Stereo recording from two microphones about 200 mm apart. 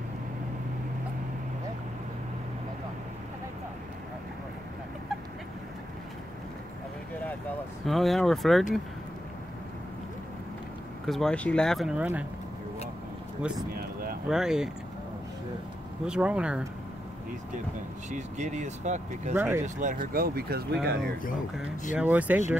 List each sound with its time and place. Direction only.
7.8 s speech: centre (ahead or behind)
11.1 s speech: centre (ahead or behind)
14.3 s speech: 5° right (ahead or behind)
16.1 s speech: 5° right (ahead or behind)
18.1 s speech: 35° right (ahead or behind)
19.3 s speech: 10° right (ahead or behind)
19.6 s speech: 40° right (ahead or behind); by 21.1 s 55° right (ahead or behind)
21.9 s speech: 10° right (ahead or behind)